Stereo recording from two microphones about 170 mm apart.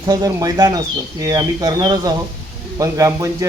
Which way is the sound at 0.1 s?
20° right (ahead or behind).